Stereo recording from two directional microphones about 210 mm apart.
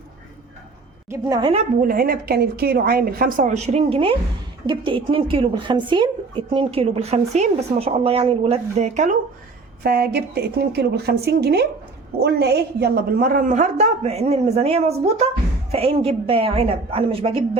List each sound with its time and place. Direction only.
1.1 s a woman's voice: 20° right (ahead or behind)
1.8 s a woman's voice: 45° right (ahead or behind)
9.8 s a woman's voice: 45° right (ahead or behind); by 17.6 s 25° right (ahead or behind)